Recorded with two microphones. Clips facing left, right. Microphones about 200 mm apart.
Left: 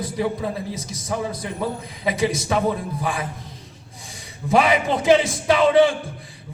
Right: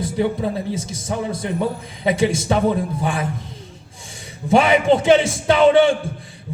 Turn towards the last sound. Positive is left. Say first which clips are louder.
# right 2 dB
turn(degrees=-30)  # may be behind; listen again after turning